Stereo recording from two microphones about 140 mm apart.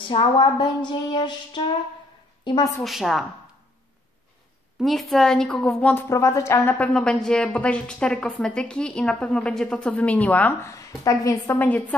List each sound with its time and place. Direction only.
0.1 s music: 35° left (ahead or behind)
2.4 s a woman's voice: 30° left (ahead or behind)
2.8 s a woman's voice: centre (ahead or behind)
4.7 s a woman's voice: centre (ahead or behind)
6.0 s speech: 20° left (ahead or behind)